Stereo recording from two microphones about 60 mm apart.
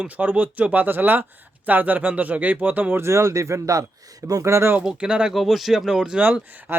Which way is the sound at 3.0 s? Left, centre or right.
Right.